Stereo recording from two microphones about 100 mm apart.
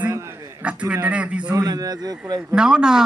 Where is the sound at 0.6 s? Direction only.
10° right (ahead or behind).